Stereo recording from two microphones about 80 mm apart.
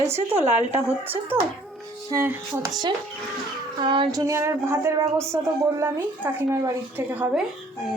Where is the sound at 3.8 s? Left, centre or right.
Right.